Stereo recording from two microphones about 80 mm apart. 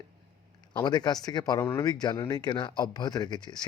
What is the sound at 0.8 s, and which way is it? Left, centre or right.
Speech, left.